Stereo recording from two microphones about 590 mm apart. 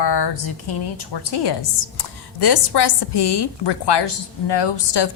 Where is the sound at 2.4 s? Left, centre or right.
Left.